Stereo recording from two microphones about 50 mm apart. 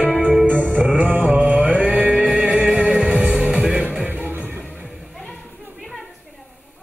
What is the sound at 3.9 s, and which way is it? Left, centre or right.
Music, right.